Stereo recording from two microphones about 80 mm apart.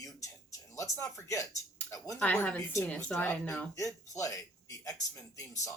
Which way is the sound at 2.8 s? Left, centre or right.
Centre.